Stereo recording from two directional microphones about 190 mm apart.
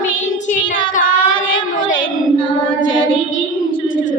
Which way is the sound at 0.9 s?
45° left (ahead or behind).